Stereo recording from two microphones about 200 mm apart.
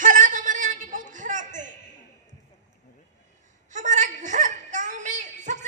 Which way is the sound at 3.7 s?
40° right (ahead or behind).